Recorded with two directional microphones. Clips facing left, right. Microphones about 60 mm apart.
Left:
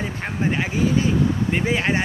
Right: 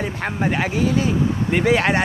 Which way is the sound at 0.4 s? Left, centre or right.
Right.